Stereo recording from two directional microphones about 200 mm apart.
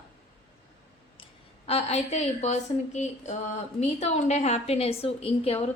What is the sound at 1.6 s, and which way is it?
A woman's voice, 30° left (ahead or behind).